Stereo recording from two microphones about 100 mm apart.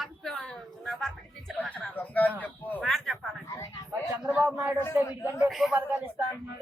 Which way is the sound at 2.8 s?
Centre (ahead or behind).